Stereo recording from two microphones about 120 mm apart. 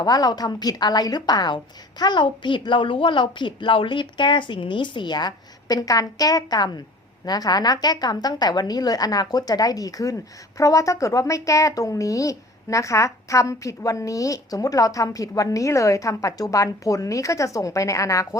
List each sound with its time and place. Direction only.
0.0 s a woman's voice: 35° left (ahead or behind)